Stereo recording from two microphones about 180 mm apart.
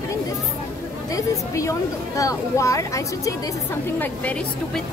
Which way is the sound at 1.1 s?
15° left (ahead or behind).